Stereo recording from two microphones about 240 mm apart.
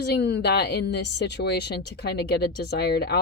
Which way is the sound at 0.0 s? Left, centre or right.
Left.